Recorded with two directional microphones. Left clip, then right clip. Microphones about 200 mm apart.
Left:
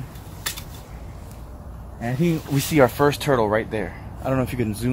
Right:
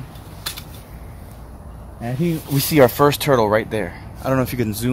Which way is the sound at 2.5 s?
40° right (ahead or behind).